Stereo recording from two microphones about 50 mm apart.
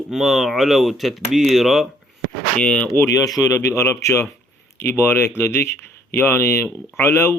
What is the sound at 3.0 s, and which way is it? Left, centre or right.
Speech, left.